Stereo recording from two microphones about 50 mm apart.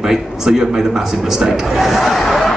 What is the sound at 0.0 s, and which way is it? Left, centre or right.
A man's voice, centre.